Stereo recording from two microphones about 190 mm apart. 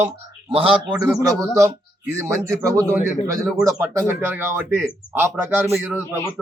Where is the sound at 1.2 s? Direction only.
20° right (ahead or behind).